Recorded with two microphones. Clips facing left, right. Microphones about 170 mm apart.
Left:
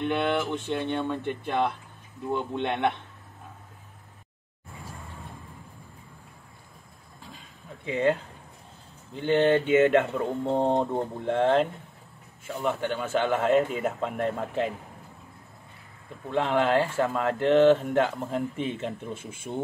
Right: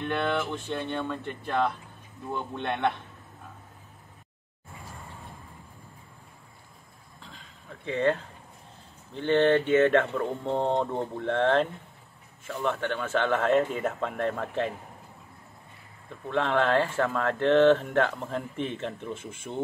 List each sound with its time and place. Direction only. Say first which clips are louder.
0.0 s speech: left 2 dB; 15° left (ahead or behind)
7.8 s speech: left 1 dB; 10° left (ahead or behind)
16.3 s speech: left 1 dB; 10° left (ahead or behind)